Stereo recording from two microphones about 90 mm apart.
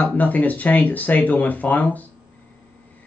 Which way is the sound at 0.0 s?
15° left (ahead or behind).